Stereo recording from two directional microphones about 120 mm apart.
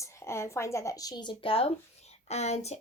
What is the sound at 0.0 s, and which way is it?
Speech, 25° left (ahead or behind).